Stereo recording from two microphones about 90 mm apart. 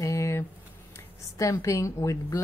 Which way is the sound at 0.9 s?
35° left (ahead or behind).